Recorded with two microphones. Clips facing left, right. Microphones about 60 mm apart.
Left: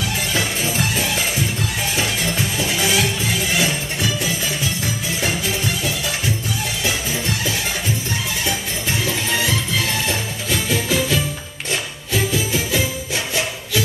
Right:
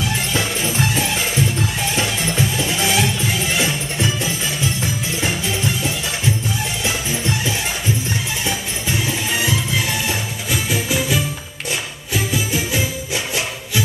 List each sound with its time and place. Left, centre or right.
0.4 s music: right
2.6 s music: right
8.5 s music: right